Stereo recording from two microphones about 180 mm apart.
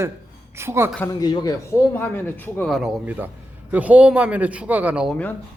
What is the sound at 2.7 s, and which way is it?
A man's voice, centre (ahead or behind).